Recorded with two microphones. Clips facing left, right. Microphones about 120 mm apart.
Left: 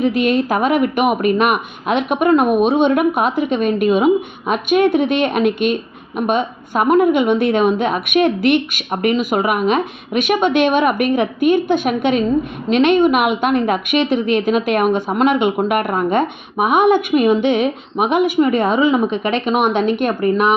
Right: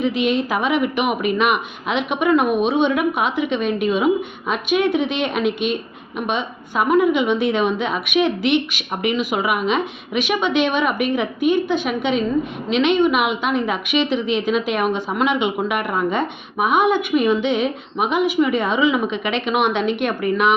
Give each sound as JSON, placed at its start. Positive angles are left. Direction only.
{"t": 0.0, "sound": "a woman's voice", "side_deg": 50}